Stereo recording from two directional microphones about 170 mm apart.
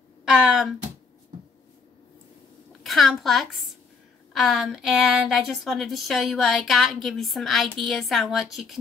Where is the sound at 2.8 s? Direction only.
Centre (ahead or behind).